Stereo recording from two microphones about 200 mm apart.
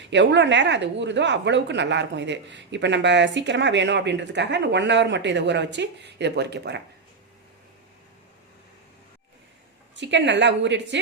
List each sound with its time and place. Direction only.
0.0 s speech: 60° right (ahead or behind)
9.9 s speech: 60° right (ahead or behind)